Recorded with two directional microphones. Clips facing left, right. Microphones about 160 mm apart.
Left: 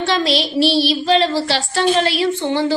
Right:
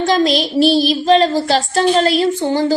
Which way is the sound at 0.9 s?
40° right (ahead or behind).